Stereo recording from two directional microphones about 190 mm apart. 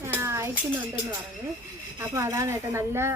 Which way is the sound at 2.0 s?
15° right (ahead or behind).